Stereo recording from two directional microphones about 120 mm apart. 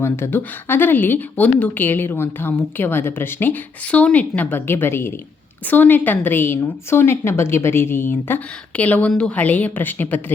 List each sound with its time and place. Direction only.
0.0 s a woman's voice: 20° left (ahead or behind)